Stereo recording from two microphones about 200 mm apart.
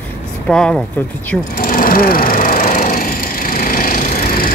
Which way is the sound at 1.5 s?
45° left (ahead or behind).